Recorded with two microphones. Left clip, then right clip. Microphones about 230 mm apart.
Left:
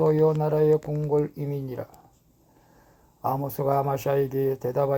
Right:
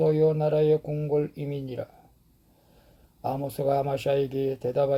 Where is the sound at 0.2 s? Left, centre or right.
Left.